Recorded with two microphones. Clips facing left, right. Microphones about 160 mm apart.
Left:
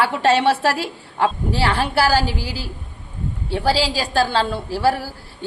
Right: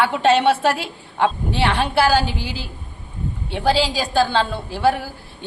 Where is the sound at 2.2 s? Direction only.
35° left (ahead or behind).